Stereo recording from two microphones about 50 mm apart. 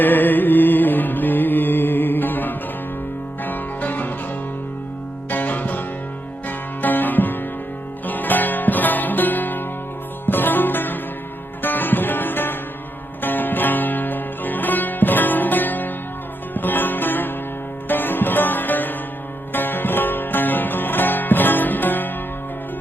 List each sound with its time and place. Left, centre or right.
0.0 s music: left
5.3 s music: left
6.8 s music: left